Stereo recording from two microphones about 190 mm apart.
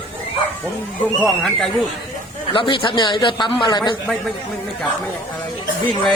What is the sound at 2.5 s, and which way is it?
Speech, 25° left (ahead or behind).